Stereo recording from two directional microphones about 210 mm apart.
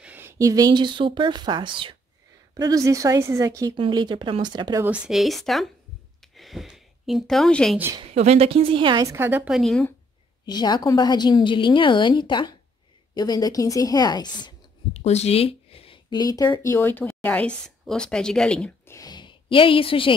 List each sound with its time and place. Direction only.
0.0 s a woman's voice: 10° right (ahead or behind)
4.8 s speech: 5° right (ahead or behind)
6.2 s a sound: centre (ahead or behind)
8.0 s speech: 30° right (ahead or behind); by 9.9 s 5° left (ahead or behind)
10.4 s a woman's voice: 20° left (ahead or behind)
15.0 s speech: 30° left (ahead or behind); by 18.9 s 5° left (ahead or behind)
18.9 s a woman's voice: 20° left (ahead or behind)